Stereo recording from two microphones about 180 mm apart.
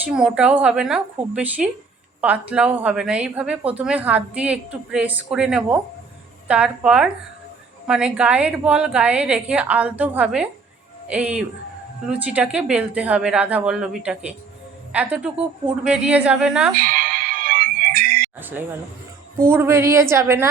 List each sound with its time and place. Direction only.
0.0 s a woman's voice: 5° right (ahead or behind)
16.8 s music: 50° right (ahead or behind)
18.3 s a woman's voice: 10° right (ahead or behind)